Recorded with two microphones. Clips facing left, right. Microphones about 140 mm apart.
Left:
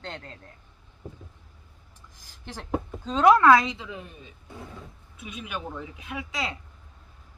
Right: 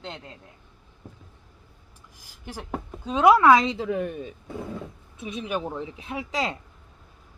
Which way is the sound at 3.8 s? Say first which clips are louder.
Right 12 dB; 60° right (ahead or behind).